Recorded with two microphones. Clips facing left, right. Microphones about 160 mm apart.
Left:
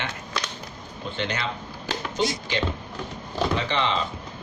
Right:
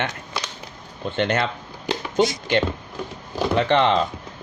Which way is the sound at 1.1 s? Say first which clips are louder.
Right 7 dB; 55° right (ahead or behind).